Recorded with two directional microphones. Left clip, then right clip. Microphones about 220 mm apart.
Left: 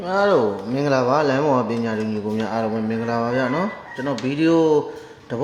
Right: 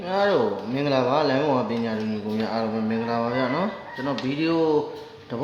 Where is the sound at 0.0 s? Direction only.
20° left (ahead or behind).